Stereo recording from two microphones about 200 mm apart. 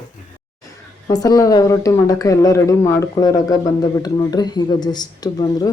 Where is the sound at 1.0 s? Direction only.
20° left (ahead or behind).